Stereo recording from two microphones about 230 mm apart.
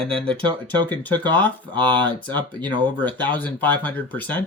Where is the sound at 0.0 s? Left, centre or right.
Right.